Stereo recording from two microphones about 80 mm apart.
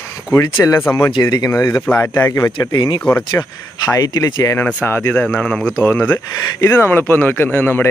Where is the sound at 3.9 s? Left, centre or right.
Left.